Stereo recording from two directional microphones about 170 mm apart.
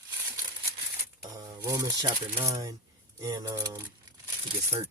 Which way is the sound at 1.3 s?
25° right (ahead or behind).